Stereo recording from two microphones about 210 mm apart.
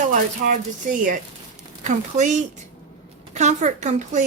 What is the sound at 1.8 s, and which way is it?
Speech, 35° right (ahead or behind).